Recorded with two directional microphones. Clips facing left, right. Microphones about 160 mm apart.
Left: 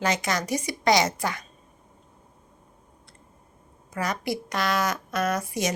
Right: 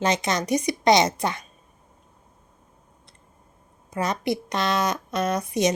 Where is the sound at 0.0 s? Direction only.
20° right (ahead or behind).